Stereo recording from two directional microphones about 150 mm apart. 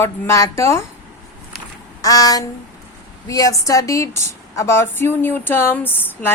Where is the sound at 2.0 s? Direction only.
25° left (ahead or behind).